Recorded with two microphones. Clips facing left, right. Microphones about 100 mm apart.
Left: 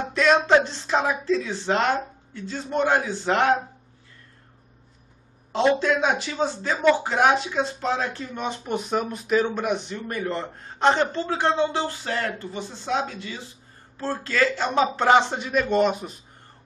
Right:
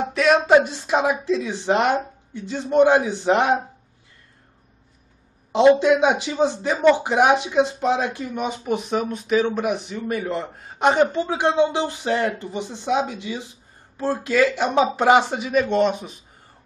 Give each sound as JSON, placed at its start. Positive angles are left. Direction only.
{"t": 0.1, "sound": "speech", "side_deg": -5}
{"t": 5.5, "sound": "speech", "side_deg": -20}